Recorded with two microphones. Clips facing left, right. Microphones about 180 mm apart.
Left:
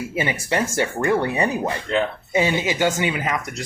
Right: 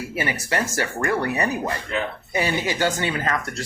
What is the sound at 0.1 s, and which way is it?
Speech, 25° left (ahead or behind).